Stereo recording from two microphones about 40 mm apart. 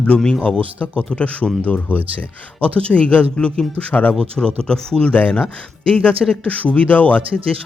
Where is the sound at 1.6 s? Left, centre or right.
Left.